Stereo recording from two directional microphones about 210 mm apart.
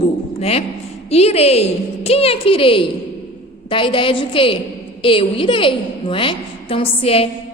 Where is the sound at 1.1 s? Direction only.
30° left (ahead or behind).